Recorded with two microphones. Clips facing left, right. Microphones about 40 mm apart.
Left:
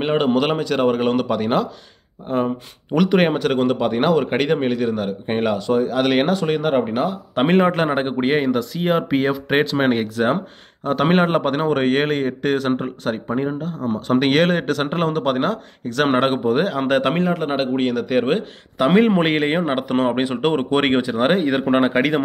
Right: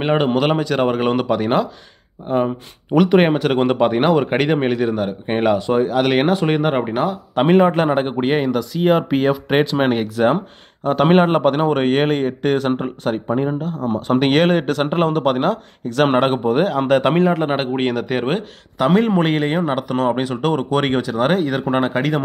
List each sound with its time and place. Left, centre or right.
0.0 s speech: centre
3.5 s speech: right
3.9 s speech: centre
6.3 s speech: centre
6.9 s speech: centre
13.6 s speech: centre
17.2 s speech: centre
18.1 s speech: centre
18.8 s a man's voice: centre